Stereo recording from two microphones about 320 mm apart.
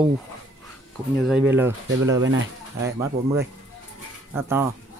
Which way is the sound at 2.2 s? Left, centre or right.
Right.